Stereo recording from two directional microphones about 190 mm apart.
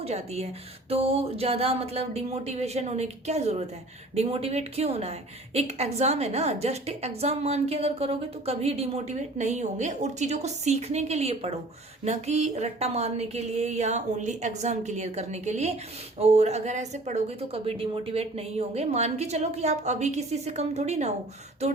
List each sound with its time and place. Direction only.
0.0 s speech: 35° right (ahead or behind)